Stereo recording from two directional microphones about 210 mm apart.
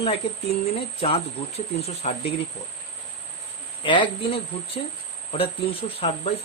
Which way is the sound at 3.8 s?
25° left (ahead or behind).